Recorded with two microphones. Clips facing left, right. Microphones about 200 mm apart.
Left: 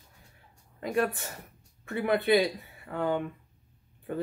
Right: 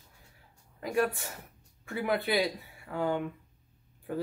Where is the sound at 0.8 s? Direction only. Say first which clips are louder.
Left 1 dB; centre (ahead or behind).